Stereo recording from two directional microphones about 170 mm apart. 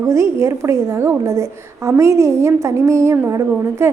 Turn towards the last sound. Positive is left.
turn(degrees=-15)  # may be behind; listen again after turning